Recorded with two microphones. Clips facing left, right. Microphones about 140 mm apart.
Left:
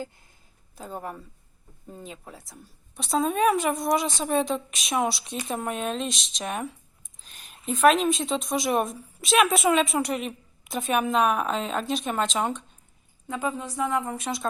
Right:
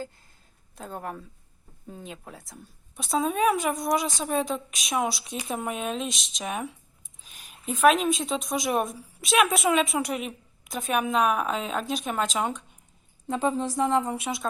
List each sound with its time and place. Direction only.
0.8 s a woman's voice: centre (ahead or behind)
13.2 s a woman's voice: 30° right (ahead or behind)
14.2 s a woman's voice: centre (ahead or behind)